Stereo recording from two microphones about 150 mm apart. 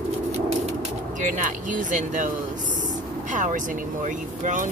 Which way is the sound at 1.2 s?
60° right (ahead or behind).